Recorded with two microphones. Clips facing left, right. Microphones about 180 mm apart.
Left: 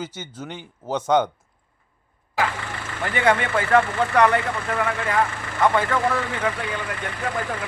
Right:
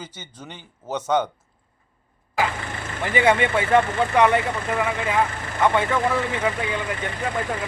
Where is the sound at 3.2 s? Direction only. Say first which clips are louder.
Right 1 dB; 15° right (ahead or behind).